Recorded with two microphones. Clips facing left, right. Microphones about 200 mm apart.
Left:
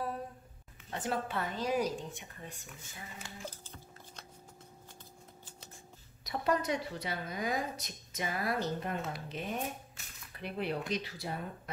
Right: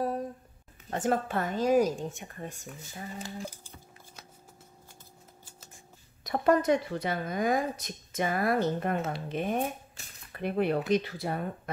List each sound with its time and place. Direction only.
0.8 s speech: 45° right (ahead or behind)
3.4 s a sound: 10° right (ahead or behind)
6.2 s speech: 50° right (ahead or behind)